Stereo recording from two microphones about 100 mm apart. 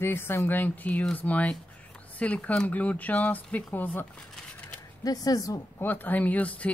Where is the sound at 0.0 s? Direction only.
25° left (ahead or behind).